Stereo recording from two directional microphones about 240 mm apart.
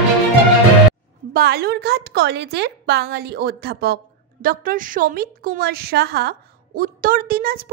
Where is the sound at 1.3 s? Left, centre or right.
Right.